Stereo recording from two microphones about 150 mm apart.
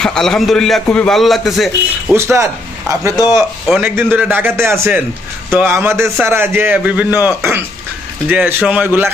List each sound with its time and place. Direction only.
0.0 s a man's voice: 5° left (ahead or behind)
2.1 s a man's voice: 20° right (ahead or behind)